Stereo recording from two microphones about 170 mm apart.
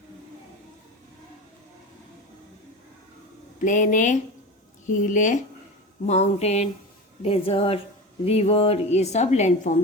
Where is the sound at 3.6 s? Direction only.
50° left (ahead or behind).